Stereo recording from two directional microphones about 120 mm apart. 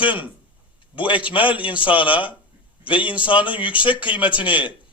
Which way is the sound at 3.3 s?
45° left (ahead or behind).